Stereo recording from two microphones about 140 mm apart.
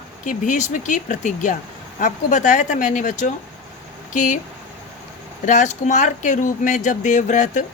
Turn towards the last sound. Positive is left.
turn(degrees=60)  # may be behind; listen again after turning